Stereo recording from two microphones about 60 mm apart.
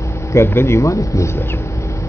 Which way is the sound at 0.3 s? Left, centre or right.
Left.